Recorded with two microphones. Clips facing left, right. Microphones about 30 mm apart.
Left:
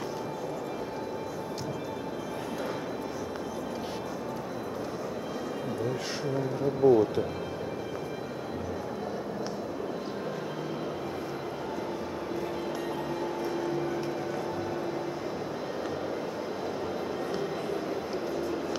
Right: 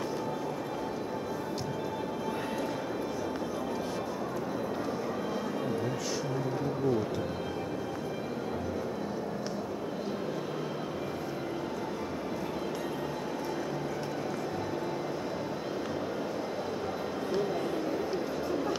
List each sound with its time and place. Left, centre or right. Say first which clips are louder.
6.8 s speech: left 9 dB; centre